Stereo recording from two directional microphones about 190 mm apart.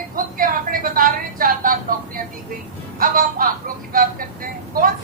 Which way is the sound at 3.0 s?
50° right (ahead or behind).